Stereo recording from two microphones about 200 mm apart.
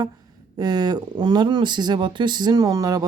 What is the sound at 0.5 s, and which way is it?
Speech, 20° right (ahead or behind).